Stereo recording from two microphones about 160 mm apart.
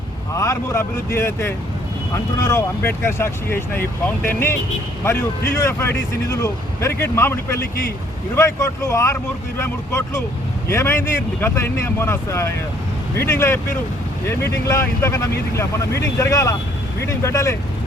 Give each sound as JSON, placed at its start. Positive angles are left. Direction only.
{"t": 0.3, "sound": "speech", "side_deg": 20}